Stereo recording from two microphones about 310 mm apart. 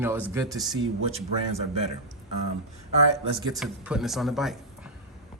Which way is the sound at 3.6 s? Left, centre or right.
Centre.